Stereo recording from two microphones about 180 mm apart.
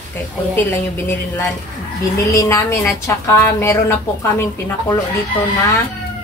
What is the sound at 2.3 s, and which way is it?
A woman's voice, 20° left (ahead or behind).